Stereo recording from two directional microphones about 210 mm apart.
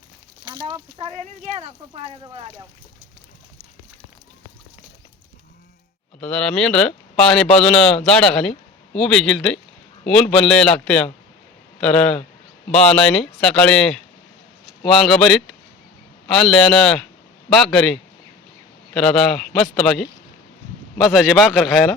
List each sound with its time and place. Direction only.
0.4 s speech: 20° right (ahead or behind)
6.1 s speech: 5° left (ahead or behind)